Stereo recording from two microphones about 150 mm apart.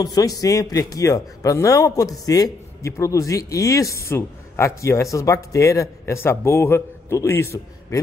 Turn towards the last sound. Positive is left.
turn(degrees=20)  # may be behind; listen again after turning